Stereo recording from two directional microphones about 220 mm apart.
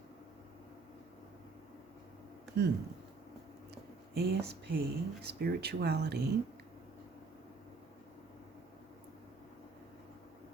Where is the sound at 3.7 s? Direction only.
45° right (ahead or behind).